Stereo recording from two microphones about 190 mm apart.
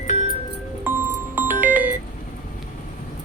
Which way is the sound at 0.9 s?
10° right (ahead or behind).